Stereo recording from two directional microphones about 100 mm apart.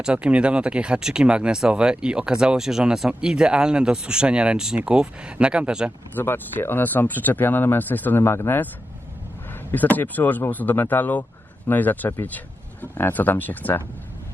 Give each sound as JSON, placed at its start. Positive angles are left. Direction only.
{"t": 0.0, "sound": "speech", "side_deg": -10}
{"t": 6.1, "sound": "speech", "side_deg": 20}
{"t": 9.7, "sound": "speech", "side_deg": 15}